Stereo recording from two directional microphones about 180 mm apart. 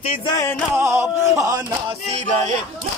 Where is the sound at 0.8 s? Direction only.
15° right (ahead or behind).